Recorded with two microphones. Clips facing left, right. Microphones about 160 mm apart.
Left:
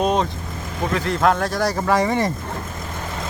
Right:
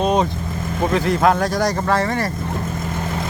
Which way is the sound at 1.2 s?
Centre (ahead or behind).